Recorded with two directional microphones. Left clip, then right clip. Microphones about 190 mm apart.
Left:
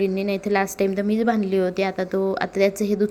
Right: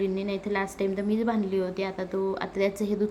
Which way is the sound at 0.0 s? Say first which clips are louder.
Left 6 dB; 25° left (ahead or behind).